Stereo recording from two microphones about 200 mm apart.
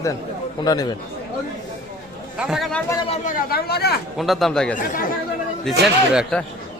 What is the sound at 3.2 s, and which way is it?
Speech, 45° left (ahead or behind).